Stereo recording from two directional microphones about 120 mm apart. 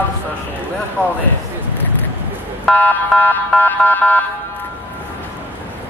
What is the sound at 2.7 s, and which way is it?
Car alarm, 15° left (ahead or behind).